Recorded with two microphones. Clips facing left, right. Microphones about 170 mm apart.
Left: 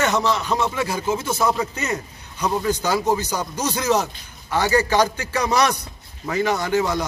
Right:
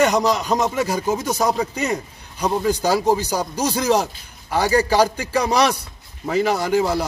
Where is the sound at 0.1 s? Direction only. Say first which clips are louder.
Right 2 dB; 40° right (ahead or behind).